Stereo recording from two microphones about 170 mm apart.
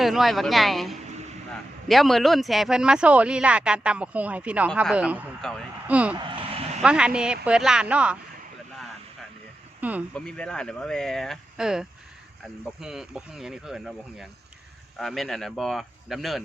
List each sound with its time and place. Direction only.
0.0 s speech: centre (ahead or behind)
5.9 s speech: 10° right (ahead or behind)
6.1 s vehicle: 30° right (ahead or behind)
6.8 s speech: 5° right (ahead or behind)
9.8 s speech: 10° right (ahead or behind)
10.2 s speech: 5° left (ahead or behind)